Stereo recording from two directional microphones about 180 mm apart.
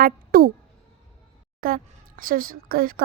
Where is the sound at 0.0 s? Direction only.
55° right (ahead or behind).